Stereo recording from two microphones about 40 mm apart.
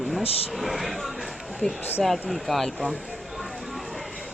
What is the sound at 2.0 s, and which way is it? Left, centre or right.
Speech, centre.